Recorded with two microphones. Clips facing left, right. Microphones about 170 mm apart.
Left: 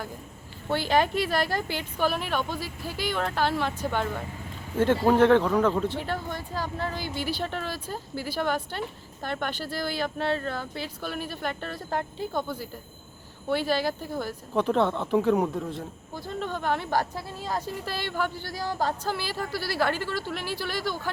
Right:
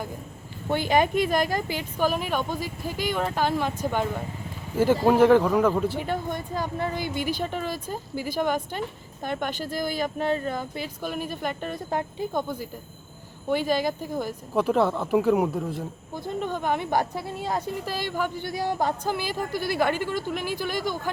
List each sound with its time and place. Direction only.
0.7 s speech: 15° right (ahead or behind)
7.0 s a woman's voice: 50° right (ahead or behind)
7.4 s speech: 10° right (ahead or behind)
13.7 s speech: 15° right (ahead or behind)
16.1 s speech: 15° right (ahead or behind)